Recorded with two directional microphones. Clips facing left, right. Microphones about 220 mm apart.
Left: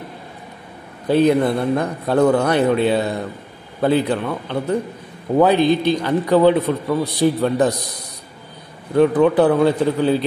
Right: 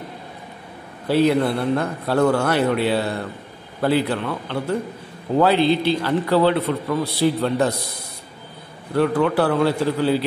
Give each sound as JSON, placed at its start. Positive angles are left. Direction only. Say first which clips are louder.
{"t": 1.1, "sound": "a man's voice", "louder": "left 3 dB", "side_deg": 15}
{"t": 8.9, "sound": "a man's voice", "louder": "left 5 dB", "side_deg": 15}